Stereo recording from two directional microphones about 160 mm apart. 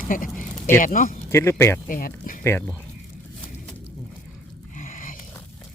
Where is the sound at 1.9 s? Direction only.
60° left (ahead or behind).